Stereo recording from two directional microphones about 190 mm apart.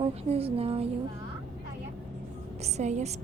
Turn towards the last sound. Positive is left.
turn(degrees=-35)  # may be behind; listen again after turning